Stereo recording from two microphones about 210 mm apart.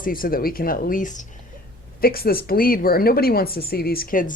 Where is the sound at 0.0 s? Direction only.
45° left (ahead or behind).